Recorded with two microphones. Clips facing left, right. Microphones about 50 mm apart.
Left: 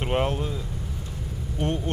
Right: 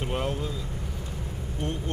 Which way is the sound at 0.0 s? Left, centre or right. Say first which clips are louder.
Left 4 dB; left.